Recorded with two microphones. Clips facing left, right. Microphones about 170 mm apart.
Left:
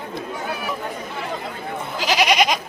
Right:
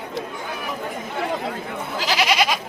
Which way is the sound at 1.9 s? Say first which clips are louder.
Left 2 dB; 15° left (ahead or behind).